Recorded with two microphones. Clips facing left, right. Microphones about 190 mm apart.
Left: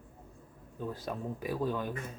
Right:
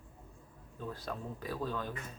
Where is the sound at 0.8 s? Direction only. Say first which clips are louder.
Left 4 dB; 15° left (ahead or behind).